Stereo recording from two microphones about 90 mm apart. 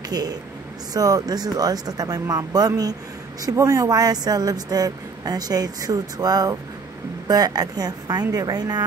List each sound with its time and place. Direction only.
0.1 s speech: 45° right (ahead or behind)